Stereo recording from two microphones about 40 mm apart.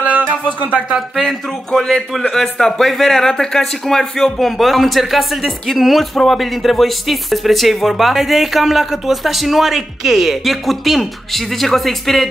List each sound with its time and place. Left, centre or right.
0.0 s a sound: right
0.6 s speech: right
1.7 s a man's voice: centre